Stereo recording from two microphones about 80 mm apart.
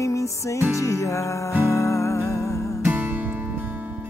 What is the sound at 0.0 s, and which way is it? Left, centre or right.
Music, left.